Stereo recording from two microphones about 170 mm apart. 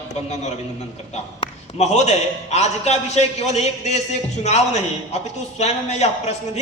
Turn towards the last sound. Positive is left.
turn(degrees=40)  # may be behind; listen again after turning